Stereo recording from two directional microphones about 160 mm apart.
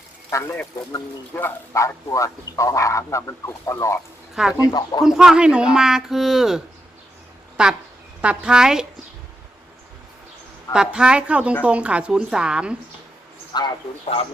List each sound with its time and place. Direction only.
0.3 s speech: 15° left (ahead or behind)
5.0 s speech: centre (ahead or behind)
10.7 s a woman's voice: 5° right (ahead or behind)
13.5 s a man's voice: 25° left (ahead or behind)
14.0 s speech: 40° left (ahead or behind)